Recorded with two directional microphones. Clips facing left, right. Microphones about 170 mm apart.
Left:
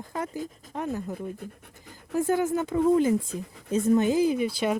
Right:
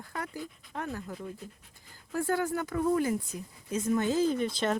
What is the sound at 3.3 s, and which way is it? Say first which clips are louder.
Speech: left 6 dB; 90° left.